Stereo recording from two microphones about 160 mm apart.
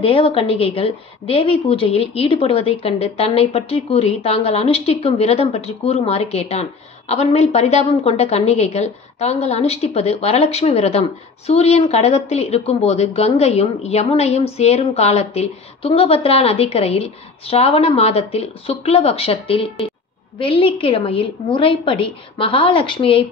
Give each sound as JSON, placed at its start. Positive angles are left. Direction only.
{"t": 0.0, "sound": "a woman's voice", "side_deg": 35}